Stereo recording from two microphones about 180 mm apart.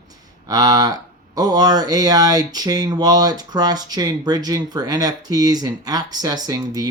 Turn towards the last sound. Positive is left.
turn(degrees=-20)  # may be behind; listen again after turning